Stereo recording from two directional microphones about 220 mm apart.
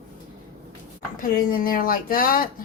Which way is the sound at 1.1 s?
40° left (ahead or behind).